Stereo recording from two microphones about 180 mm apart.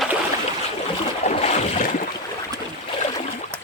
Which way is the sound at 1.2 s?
35° left (ahead or behind).